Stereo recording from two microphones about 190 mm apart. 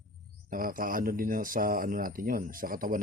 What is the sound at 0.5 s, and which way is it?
Speech, 45° right (ahead or behind).